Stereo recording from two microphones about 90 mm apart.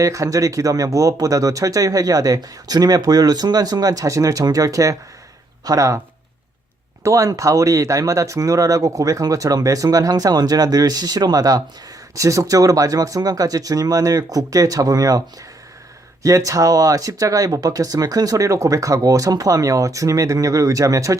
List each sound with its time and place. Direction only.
0.0 s speech: 40° right (ahead or behind)
7.0 s speech: 35° right (ahead or behind)
16.2 s speech: 40° right (ahead or behind)